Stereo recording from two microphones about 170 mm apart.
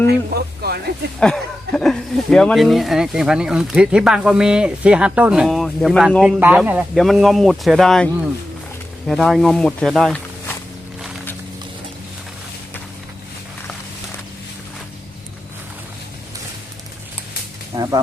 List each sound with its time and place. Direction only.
0.1 s speech: 70° right (ahead or behind)
1.2 s speech: 5° left (ahead or behind)
17.7 s a sound: 25° right (ahead or behind)